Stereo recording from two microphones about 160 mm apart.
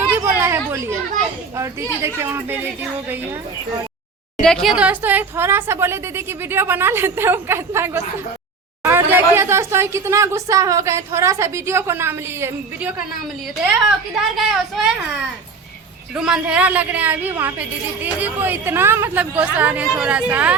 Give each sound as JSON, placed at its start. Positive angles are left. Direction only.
{"t": 0.1, "sound": "a sound", "side_deg": -15}
{"t": 1.5, "sound": "a woman's voice", "side_deg": -15}
{"t": 4.4, "sound": "a woman's voice", "side_deg": 5}
{"t": 14.3, "sound": "speech", "side_deg": 0}
{"t": 16.1, "sound": "a woman's voice", "side_deg": -5}